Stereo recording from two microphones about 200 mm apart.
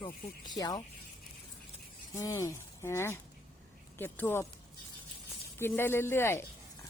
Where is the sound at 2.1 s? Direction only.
15° left (ahead or behind).